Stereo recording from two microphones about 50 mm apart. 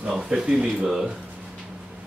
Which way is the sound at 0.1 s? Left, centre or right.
Centre.